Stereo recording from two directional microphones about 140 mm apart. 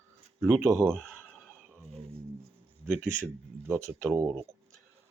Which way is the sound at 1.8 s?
45° right (ahead or behind).